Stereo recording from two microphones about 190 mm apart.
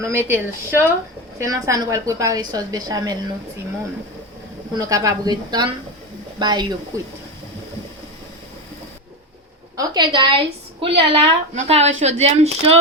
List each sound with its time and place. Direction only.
0.0 s a woman's voice: 10° right (ahead or behind)
4.7 s a woman's voice: 20° right (ahead or behind)
9.7 s a woman's voice: 25° right (ahead or behind)